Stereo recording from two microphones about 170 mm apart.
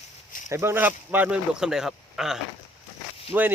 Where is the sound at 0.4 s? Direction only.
15° right (ahead or behind).